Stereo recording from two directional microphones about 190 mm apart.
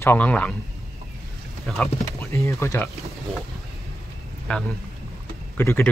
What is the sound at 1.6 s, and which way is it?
Speech, centre (ahead or behind).